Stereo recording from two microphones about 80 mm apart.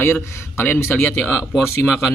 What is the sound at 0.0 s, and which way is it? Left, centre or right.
Speech, left.